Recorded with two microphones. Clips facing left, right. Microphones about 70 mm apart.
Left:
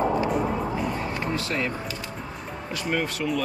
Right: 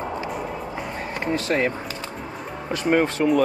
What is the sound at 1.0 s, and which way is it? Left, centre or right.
Speech, right.